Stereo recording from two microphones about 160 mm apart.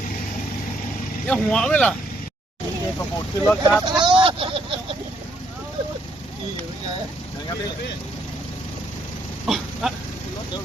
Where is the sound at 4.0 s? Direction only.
30° right (ahead or behind).